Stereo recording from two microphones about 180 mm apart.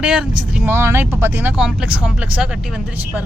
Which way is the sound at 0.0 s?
5° right (ahead or behind).